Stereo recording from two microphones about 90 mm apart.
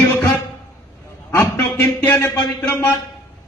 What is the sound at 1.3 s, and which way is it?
A man's voice, 25° left (ahead or behind).